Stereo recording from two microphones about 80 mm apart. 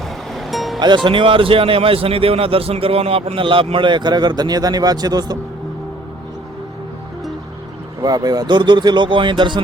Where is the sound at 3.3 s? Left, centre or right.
Right.